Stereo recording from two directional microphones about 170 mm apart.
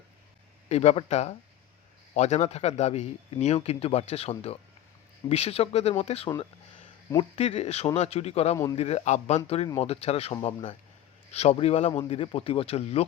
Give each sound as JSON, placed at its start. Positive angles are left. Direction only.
{"t": 0.7, "sound": "a man's voice", "side_deg": 40}